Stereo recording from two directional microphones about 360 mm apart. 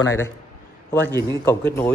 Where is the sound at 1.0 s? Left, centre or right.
Centre.